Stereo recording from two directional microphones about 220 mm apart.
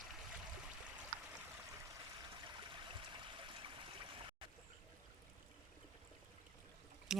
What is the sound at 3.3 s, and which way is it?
Stream, 20° right (ahead or behind).